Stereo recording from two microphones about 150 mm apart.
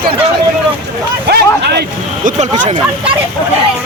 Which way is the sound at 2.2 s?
60° right (ahead or behind).